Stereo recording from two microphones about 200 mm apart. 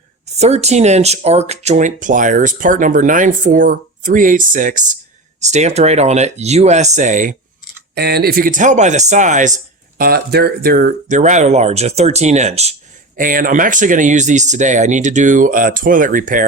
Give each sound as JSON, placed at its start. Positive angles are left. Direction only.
{"t": 0.3, "sound": "speech", "side_deg": -35}
{"t": 7.9, "sound": "speech", "side_deg": -55}
{"t": 10.0, "sound": "speech", "side_deg": -50}